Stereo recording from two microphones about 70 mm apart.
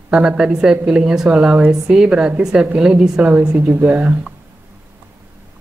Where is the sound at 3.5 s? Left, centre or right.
Right.